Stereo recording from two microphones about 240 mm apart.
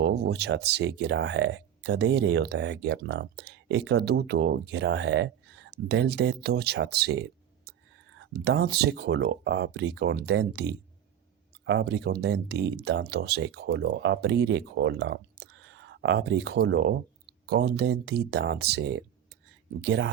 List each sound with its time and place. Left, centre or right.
0.0 s speech: right